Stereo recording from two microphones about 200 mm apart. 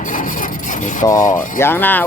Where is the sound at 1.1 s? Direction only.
40° left (ahead or behind).